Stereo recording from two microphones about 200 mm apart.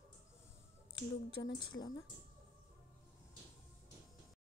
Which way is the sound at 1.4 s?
20° left (ahead or behind).